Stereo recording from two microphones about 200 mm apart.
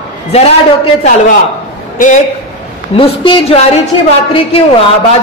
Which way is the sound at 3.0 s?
30° left (ahead or behind).